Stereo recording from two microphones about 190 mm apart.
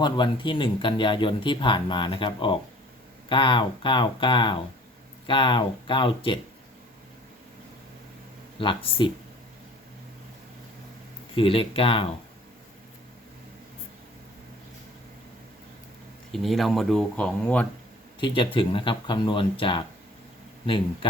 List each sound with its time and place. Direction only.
0.0 s speech: 25° left (ahead or behind)
8.5 s speech: 25° left (ahead or behind)
11.3 s speech: 30° left (ahead or behind)
16.3 s speech: centre (ahead or behind)
18.3 s speech: 25° left (ahead or behind)